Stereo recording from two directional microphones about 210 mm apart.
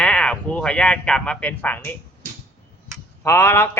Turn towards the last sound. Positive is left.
turn(degrees=10)  # may be behind; listen again after turning